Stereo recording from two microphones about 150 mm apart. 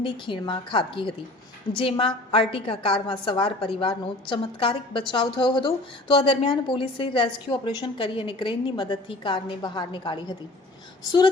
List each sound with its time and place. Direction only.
0.0 s a woman's voice: 35° left (ahead or behind)